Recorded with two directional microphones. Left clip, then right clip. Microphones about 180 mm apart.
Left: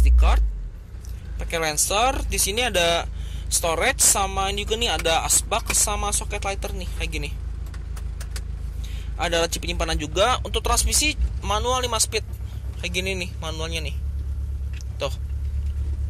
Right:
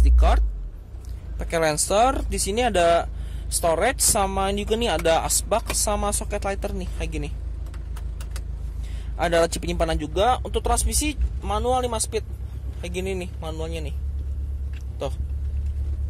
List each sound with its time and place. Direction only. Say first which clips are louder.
0.0 s a sound: right 3 dB; 30° right (ahead or behind)
1.5 s speech: right 2 dB; 35° right (ahead or behind)
9.1 s speech: right 2 dB; 35° right (ahead or behind)